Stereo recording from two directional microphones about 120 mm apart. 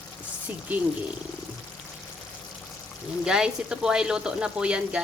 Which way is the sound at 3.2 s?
5° right (ahead or behind).